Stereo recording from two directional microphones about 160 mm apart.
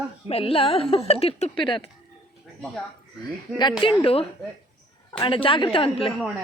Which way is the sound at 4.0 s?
35° left (ahead or behind).